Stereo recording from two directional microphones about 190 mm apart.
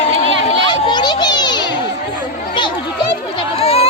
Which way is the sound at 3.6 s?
30° left (ahead or behind).